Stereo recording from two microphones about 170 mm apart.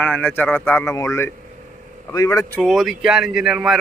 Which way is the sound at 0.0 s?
10° left (ahead or behind).